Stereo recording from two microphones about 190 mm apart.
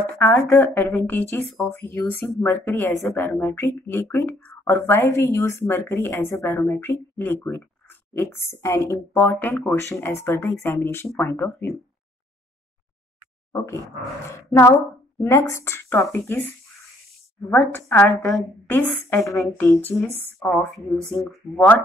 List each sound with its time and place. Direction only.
0.0 s speech: 10° left (ahead or behind)
13.5 s speech: 15° left (ahead or behind)
17.5 s speech: 10° left (ahead or behind)